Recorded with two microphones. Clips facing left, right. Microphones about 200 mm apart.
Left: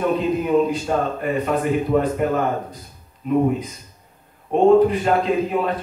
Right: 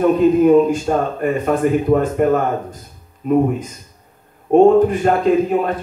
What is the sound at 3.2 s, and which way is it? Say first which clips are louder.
Speech: right 4 dB; 45° right (ahead or behind).